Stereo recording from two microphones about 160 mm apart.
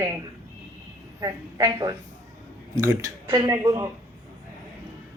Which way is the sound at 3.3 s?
20° right (ahead or behind).